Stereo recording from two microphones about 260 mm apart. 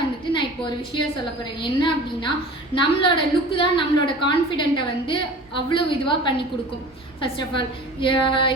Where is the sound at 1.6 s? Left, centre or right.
Centre.